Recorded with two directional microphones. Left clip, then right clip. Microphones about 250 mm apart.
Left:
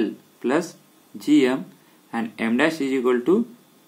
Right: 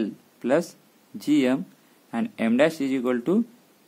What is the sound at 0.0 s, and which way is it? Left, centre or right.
Speech, right.